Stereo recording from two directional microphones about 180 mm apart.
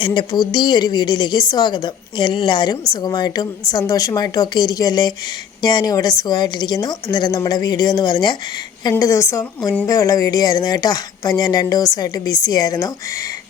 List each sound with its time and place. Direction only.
0.0 s a woman's voice: 25° left (ahead or behind)